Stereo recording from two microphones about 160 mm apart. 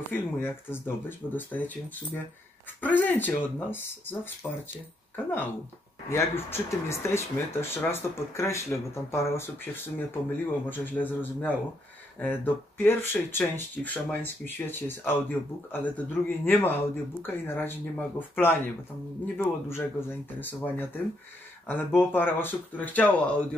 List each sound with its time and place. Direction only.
0.1 s speech: 15° left (ahead or behind)
2.8 s speech: 10° left (ahead or behind)
12.2 s speech: 10° left (ahead or behind)